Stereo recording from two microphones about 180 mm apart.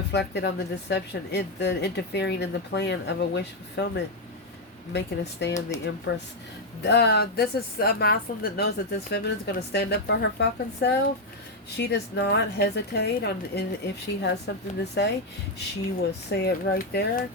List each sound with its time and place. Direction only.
0.1 s a woman's voice: 70° left (ahead or behind)
16.3 s speech: 65° left (ahead or behind)